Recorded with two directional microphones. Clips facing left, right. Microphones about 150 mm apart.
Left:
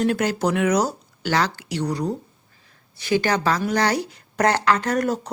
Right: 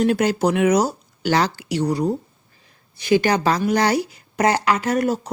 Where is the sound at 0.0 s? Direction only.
15° right (ahead or behind).